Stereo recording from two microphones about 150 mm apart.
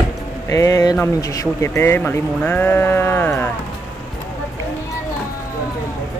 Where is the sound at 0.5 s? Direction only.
20° left (ahead or behind).